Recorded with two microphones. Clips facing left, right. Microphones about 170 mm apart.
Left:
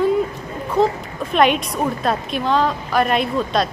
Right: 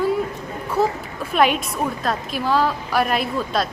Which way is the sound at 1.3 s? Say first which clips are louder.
Left 2 dB; 5° right (ahead or behind).